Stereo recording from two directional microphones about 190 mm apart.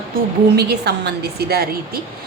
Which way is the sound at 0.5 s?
60° right (ahead or behind).